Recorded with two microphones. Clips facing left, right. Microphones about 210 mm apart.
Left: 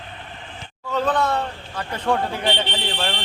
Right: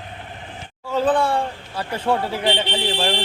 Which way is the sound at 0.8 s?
10° right (ahead or behind).